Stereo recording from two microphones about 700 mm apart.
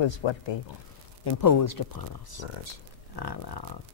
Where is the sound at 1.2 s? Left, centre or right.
Left.